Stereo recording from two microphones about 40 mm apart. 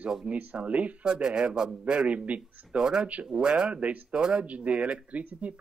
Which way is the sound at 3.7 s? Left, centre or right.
Right.